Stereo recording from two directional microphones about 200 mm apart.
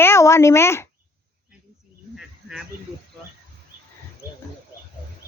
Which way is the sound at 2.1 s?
Centre (ahead or behind).